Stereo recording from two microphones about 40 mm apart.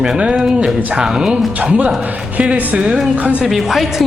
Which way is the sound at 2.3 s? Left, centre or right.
Right.